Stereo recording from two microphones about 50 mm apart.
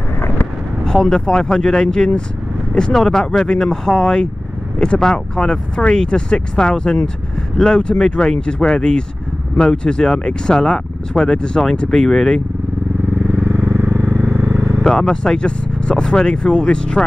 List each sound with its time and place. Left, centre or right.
0.8 s speech: centre
13.4 s vehicle: right
14.8 s speech: centre